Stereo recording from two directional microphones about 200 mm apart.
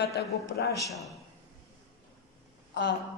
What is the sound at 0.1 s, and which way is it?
Speech, 50° left (ahead or behind).